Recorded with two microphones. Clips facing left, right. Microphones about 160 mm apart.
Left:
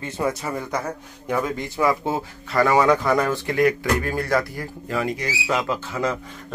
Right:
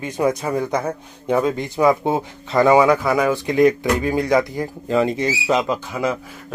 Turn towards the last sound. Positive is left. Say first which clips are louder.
# right 3 dB
turn(degrees=-15)  # may be behind; listen again after turning